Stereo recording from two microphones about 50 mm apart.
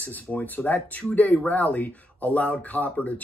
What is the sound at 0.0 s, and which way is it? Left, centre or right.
Speech, left.